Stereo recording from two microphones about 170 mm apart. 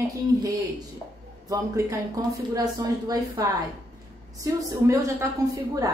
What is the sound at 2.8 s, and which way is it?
Speech, 20° right (ahead or behind).